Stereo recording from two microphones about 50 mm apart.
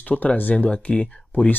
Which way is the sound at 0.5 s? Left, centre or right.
Left.